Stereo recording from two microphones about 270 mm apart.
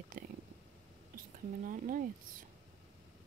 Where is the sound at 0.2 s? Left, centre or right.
Right.